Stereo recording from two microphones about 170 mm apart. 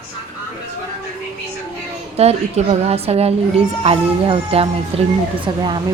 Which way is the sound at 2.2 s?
40° right (ahead or behind).